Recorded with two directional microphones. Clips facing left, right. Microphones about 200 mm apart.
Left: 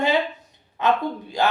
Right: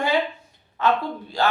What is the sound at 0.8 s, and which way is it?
Speech, 20° left (ahead or behind).